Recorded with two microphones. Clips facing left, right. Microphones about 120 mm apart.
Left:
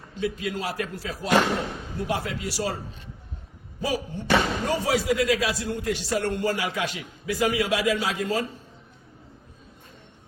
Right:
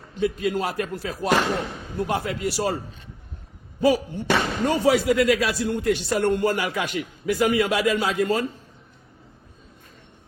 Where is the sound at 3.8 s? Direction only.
60° right (ahead or behind).